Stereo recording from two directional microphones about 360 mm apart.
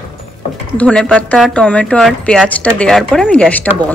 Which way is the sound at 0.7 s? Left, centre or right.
Centre.